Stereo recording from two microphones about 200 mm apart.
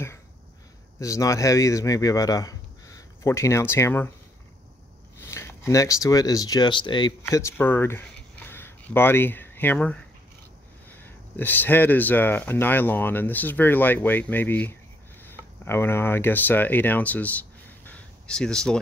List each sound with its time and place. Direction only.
0.9 s speech: 15° left (ahead or behind)
5.3 s speech: 15° left (ahead or behind)